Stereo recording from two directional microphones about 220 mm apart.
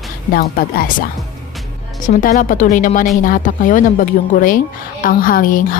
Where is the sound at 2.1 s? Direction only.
35° left (ahead or behind).